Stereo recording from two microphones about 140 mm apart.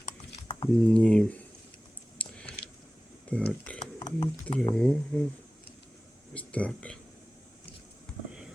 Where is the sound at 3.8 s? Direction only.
30° left (ahead or behind).